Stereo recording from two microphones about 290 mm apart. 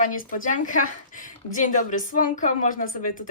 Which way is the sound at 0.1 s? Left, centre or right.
Left.